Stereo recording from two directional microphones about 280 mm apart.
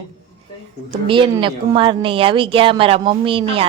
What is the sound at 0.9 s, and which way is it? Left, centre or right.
A woman's voice, centre.